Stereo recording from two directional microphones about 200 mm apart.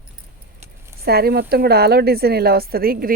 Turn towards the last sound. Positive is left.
turn(degrees=-45)  # may be behind; listen again after turning